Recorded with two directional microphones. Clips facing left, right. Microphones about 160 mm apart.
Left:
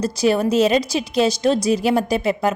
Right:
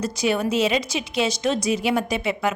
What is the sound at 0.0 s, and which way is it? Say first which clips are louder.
A woman's voice: left 5 dB; 35° left (ahead or behind).